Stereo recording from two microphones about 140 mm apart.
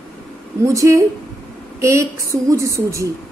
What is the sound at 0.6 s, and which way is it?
A woman's voice, 20° right (ahead or behind).